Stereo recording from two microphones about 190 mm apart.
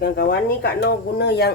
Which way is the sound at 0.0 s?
60° left (ahead or behind).